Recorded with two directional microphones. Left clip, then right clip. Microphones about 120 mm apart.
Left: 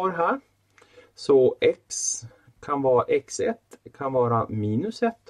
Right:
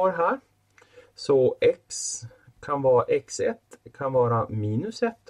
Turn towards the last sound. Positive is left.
turn(degrees=35)  # may be behind; listen again after turning